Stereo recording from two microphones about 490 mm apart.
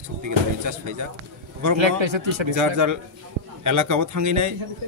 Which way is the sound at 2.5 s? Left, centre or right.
Right.